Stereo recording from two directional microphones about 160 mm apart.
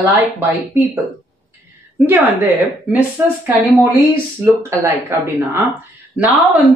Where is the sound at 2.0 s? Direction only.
10° right (ahead or behind).